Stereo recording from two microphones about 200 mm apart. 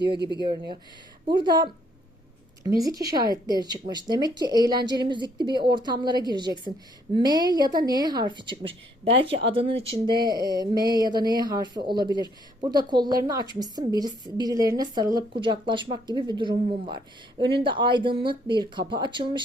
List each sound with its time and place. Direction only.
1.3 s a woman's voice: 20° right (ahead or behind)